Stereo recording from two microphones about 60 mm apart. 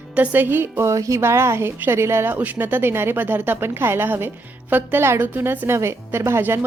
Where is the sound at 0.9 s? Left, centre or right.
Right.